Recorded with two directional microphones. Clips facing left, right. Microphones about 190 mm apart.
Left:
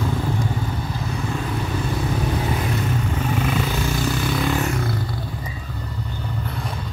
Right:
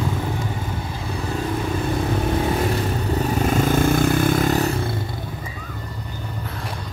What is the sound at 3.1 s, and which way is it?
Vehicle, 40° right (ahead or behind).